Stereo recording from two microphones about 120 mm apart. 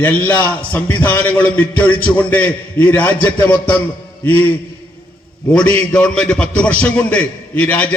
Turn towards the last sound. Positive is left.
turn(degrees=15)  # may be behind; listen again after turning